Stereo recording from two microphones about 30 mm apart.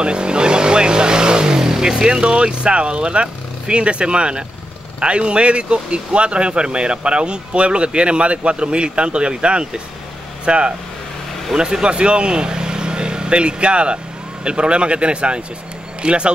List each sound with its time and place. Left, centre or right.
0.0 s vehicle: right
1.6 s speech: centre; by 10.7 s right
11.8 s speech: right